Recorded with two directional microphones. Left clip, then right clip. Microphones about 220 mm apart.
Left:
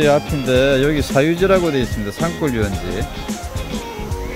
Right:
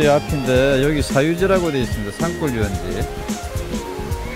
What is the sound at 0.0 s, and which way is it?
Speech, centre (ahead or behind).